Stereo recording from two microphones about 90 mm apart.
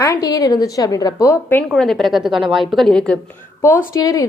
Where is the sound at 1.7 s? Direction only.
Centre (ahead or behind).